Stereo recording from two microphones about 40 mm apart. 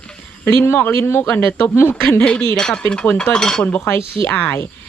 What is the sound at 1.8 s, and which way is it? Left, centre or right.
Speech, left.